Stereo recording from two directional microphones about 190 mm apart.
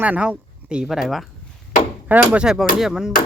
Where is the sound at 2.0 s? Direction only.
10° right (ahead or behind).